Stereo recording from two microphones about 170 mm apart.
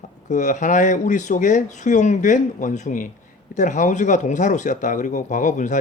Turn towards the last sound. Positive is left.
turn(degrees=45)  # may be behind; listen again after turning